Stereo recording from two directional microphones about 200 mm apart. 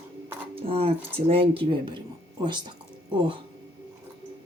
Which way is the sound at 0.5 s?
30° right (ahead or behind).